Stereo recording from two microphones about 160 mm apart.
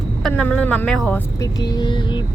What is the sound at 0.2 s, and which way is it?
Speech, 5° left (ahead or behind).